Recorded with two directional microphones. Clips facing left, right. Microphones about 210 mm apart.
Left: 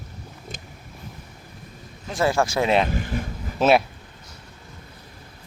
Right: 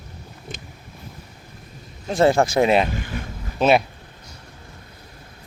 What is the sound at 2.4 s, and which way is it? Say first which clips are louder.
Speech: right 4 dB; 20° right (ahead or behind).